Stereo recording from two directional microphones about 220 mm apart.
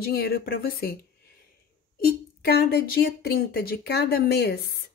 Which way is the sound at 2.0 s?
45° left (ahead or behind).